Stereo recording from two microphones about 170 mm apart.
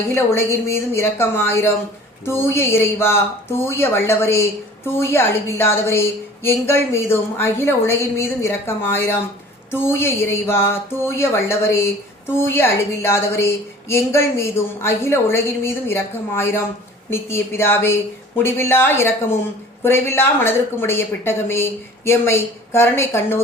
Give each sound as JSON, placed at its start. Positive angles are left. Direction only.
{"t": 0.1, "sound": "a woman's voice", "side_deg": 15}